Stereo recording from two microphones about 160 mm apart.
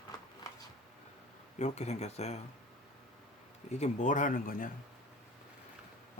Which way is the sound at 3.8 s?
50° left (ahead or behind).